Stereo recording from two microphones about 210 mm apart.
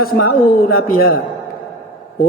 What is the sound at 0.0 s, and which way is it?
Speech, 45° left (ahead or behind).